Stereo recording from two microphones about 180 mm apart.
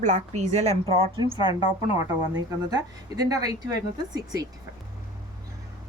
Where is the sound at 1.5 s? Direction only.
30° left (ahead or behind).